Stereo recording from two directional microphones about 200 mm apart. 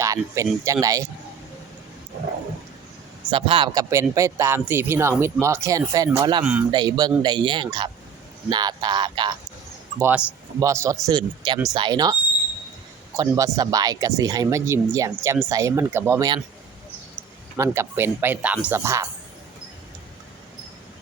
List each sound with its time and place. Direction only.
0.0 s speech: 15° right (ahead or behind)
3.2 s speech: 25° right (ahead or behind)
6.4 s a man's voice: 5° right (ahead or behind)
6.7 s speech: 20° right (ahead or behind)
10.0 s speech: 10° right (ahead or behind)
13.1 s speech: 15° right (ahead or behind)
17.6 s speech: 10° right (ahead or behind)